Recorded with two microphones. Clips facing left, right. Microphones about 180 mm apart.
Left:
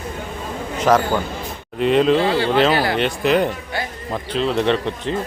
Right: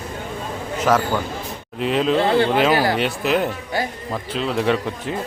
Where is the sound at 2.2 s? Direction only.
50° right (ahead or behind).